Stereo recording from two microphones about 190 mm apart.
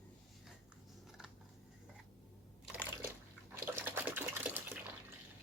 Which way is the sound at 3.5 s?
10° right (ahead or behind).